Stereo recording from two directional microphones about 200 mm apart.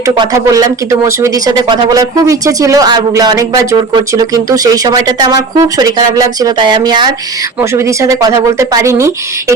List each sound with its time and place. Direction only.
0.1 s speech: 20° right (ahead or behind)